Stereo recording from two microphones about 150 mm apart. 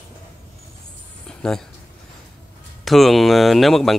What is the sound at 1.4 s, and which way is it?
Speech, 5° left (ahead or behind).